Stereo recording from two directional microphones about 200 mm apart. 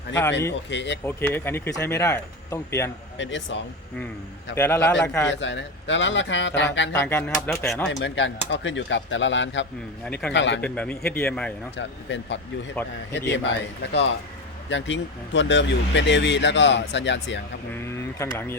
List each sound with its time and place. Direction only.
0.7 s speech: 65° left (ahead or behind)
1.0 s speech: 10° left (ahead or behind)
3.2 s speech: 65° left (ahead or behind)
4.5 s speech: 10° left (ahead or behind)
5.3 s speech: 65° left (ahead or behind)
7.0 s speech: 10° left (ahead or behind)
7.9 s speech: 60° left (ahead or behind)
10.1 s speech: 5° left (ahead or behind)
10.3 s speech: 65° left (ahead or behind)
10.6 s speech: 5° left (ahead or behind)
11.8 s speech: 65° left (ahead or behind)
18.2 s speech: 15° left (ahead or behind)